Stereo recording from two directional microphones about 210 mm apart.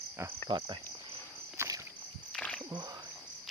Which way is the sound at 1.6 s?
15° right (ahead or behind).